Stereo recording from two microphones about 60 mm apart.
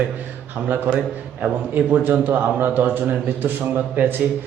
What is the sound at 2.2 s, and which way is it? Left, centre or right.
A man's voice, right.